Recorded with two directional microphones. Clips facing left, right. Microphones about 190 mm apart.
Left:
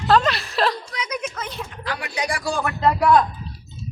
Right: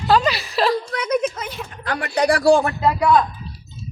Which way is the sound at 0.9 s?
55° right (ahead or behind).